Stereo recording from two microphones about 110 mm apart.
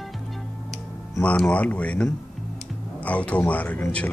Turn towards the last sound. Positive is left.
turn(degrees=15)  # may be behind; listen again after turning